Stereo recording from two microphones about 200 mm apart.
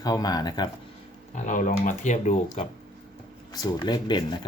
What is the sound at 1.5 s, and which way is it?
Speech, 40° left (ahead or behind).